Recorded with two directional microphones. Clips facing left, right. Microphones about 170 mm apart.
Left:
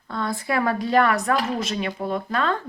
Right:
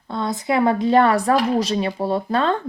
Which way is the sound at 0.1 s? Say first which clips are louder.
Right 4 dB; 20° right (ahead or behind).